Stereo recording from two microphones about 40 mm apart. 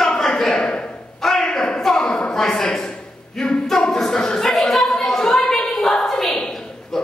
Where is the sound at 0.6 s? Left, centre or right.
Left.